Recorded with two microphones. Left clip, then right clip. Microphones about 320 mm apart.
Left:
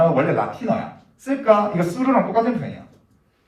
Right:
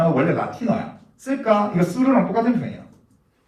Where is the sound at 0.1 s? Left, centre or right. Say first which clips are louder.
Left 1 dB; left.